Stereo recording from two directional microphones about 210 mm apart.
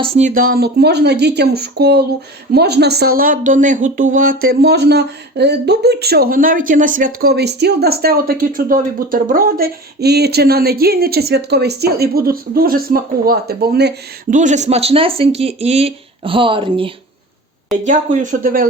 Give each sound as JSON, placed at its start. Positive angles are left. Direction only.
{"t": 0.0, "sound": "speech", "side_deg": -30}
{"t": 7.2, "sound": "speech", "side_deg": -50}
{"t": 14.3, "sound": "speech", "side_deg": -35}
{"t": 17.8, "sound": "speech", "side_deg": -35}